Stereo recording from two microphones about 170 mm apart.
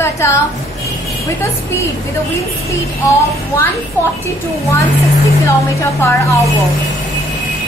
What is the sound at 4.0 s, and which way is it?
Speech, 10° left (ahead or behind).